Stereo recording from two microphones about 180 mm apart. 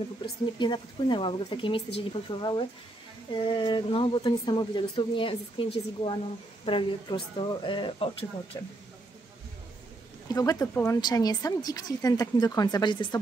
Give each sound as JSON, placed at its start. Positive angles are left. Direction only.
{"t": 0.2, "sound": "speech", "side_deg": 25}
{"t": 10.2, "sound": "speech", "side_deg": 20}